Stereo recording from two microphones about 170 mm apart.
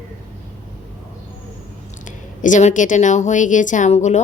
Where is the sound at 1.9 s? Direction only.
50° left (ahead or behind).